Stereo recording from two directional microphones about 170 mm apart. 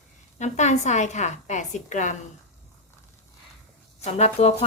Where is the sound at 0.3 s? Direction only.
45° left (ahead or behind).